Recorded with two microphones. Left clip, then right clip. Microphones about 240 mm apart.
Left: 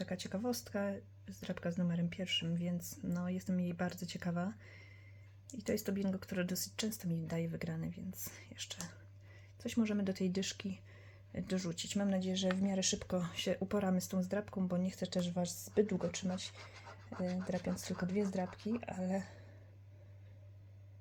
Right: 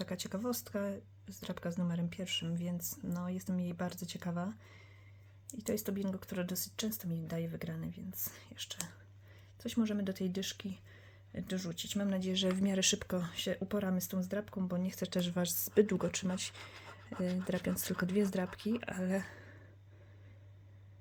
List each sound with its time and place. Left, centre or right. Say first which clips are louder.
0.0 s speech: right 1 dB; centre
12.3 s speech: right 2 dB; right; by 14.8 s centre
14.8 s speech: right 2 dB; centre